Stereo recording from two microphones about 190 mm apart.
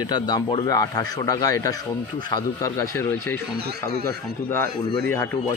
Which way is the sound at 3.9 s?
55° right (ahead or behind).